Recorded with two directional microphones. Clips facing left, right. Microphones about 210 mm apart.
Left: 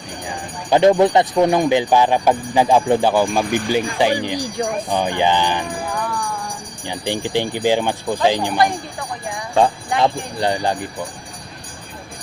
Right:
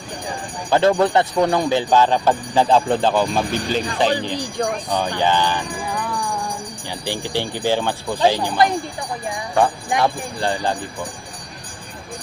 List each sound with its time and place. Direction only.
0.7 s speech: 15° left (ahead or behind)
6.8 s speech: 15° left (ahead or behind)
10.0 s speech: 15° left (ahead or behind)